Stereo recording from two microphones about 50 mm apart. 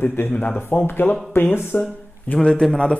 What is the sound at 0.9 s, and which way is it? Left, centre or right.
Speech, left.